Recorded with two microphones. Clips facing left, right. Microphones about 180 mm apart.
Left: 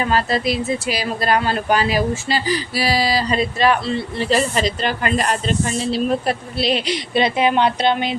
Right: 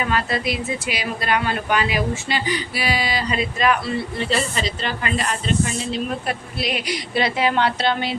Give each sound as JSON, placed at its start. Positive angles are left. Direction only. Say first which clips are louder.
{"t": 0.0, "sound": "speech", "louder": "left 4 dB", "side_deg": 35}
{"t": 5.9, "sound": "a woman's voice", "louder": "left 6 dB", "side_deg": 35}